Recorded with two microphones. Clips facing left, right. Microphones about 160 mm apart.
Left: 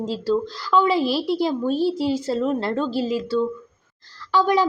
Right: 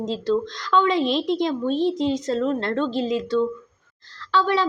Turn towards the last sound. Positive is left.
turn(degrees=10)  # may be behind; listen again after turning